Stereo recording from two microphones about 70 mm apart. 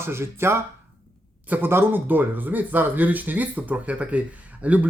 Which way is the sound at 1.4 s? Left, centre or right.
Right.